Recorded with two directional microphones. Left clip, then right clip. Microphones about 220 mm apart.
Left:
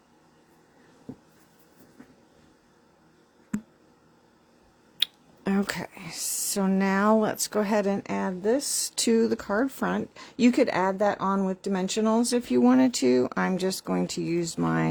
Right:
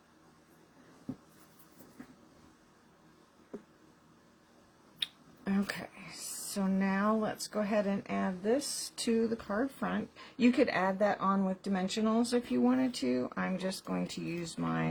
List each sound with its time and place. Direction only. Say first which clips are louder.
4.9 s clicking: left 10 dB; 55° left (ahead or behind)
6.6 s speech: left 8 dB; 55° left (ahead or behind)